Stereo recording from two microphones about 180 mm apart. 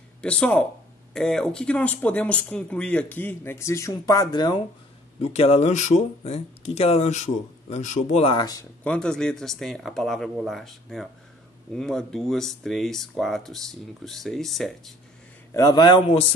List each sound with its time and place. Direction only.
0.2 s speech: 5° left (ahead or behind); by 4.6 s 25° left (ahead or behind)
5.2 s speech: 35° left (ahead or behind)
8.8 s speech: 5° left (ahead or behind)
15.5 s a man's voice: 20° left (ahead or behind)